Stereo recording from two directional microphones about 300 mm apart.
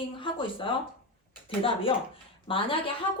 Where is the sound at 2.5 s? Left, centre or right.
Centre.